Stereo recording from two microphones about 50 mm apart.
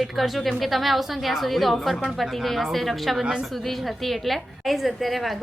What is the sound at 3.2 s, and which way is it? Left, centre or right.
Speech, centre.